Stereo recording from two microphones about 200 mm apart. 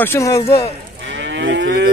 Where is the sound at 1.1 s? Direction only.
65° right (ahead or behind).